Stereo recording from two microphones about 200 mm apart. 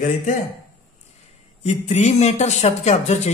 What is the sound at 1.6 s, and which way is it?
Speech, 35° left (ahead or behind).